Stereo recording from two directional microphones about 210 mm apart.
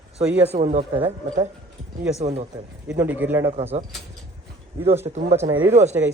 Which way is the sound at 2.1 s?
30° right (ahead or behind).